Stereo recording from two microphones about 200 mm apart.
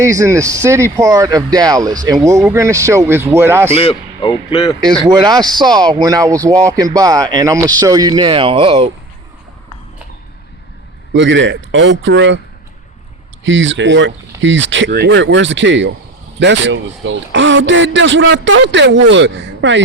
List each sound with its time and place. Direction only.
0.0 s speech: 15° right (ahead or behind)
3.8 s a man's voice: 25° left (ahead or behind)
5.0 s speech: 20° right (ahead or behind)
11.1 s speech: 65° right (ahead or behind)
13.4 s speech: 70° right (ahead or behind)